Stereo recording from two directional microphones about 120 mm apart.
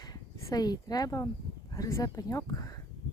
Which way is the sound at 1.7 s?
25° left (ahead or behind).